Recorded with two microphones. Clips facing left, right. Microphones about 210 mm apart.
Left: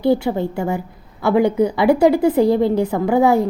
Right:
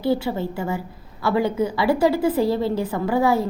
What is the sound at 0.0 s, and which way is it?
Speech, 20° left (ahead or behind).